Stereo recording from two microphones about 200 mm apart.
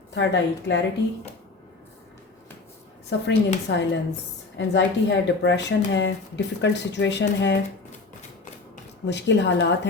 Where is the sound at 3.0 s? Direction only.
60° left (ahead or behind).